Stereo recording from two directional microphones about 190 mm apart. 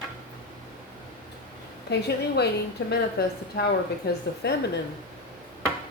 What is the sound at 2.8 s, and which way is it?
A woman's voice, 65° left (ahead or behind).